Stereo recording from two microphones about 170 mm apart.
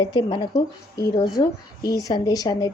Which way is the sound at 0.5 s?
65° left (ahead or behind).